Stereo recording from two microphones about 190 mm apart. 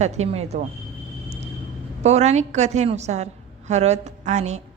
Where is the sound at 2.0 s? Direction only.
35° right (ahead or behind).